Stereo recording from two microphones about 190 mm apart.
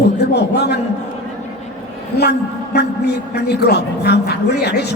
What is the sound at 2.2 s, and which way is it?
A man's voice, 60° left (ahead or behind).